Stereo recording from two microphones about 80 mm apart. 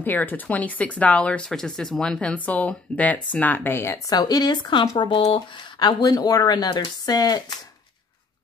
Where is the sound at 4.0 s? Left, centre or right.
Left.